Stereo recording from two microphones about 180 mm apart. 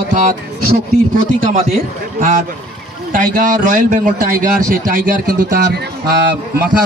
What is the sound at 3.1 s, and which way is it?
A man's voice, 50° right (ahead or behind).